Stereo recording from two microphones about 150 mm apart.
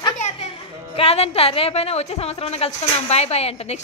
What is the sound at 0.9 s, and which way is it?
Speech, 40° left (ahead or behind).